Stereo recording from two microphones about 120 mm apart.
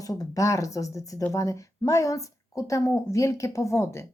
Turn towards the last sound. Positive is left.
turn(degrees=20)  # may be behind; listen again after turning